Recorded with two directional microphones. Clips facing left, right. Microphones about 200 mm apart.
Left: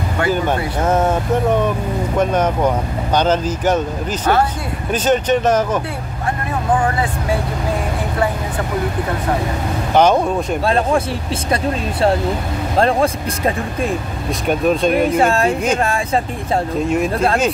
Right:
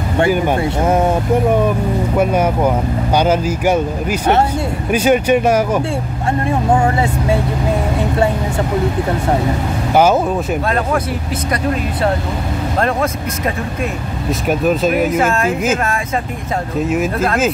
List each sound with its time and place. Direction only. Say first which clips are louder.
0.8 s speech: right 1 dB; 10° right (ahead or behind)
6.7 s speech: right 1 dB; 25° right (ahead or behind)
9.9 s speech: right 1 dB; 5° right (ahead or behind)
12.7 s speech: left 3 dB; 30° left (ahead or behind)
14.5 s speech: even; 5° right (ahead or behind)
15.1 s speech: left 1 dB; 30° left (ahead or behind)
16.8 s speech: right 3 dB; 5° right (ahead or behind)